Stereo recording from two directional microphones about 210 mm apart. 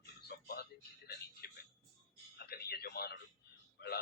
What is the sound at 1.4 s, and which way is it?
Music, 50° left (ahead or behind).